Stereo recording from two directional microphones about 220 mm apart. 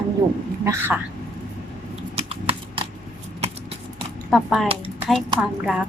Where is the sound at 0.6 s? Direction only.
15° right (ahead or behind).